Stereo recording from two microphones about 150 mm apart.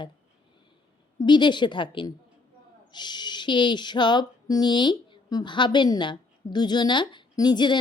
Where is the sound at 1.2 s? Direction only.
30° left (ahead or behind).